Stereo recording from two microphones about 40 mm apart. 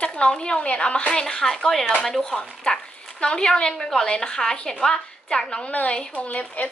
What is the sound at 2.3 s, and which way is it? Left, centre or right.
Speech, centre.